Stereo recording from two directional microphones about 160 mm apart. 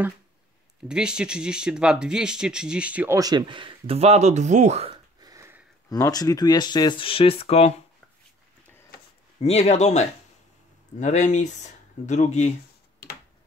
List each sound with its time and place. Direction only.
0.8 s speech: 5° right (ahead or behind)
3.2 s speech: 25° right (ahead or behind); by 4.9 s 40° right (ahead or behind)
5.2 s sniff: 20° right (ahead or behind)
5.9 s speech: 20° left (ahead or behind); by 7.7 s 40° left (ahead or behind)
9.4 s speech: 40° left (ahead or behind)